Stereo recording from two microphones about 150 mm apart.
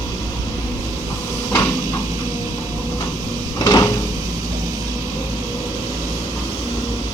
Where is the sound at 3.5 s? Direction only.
25° left (ahead or behind).